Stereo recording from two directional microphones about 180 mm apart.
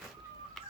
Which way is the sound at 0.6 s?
Centre (ahead or behind).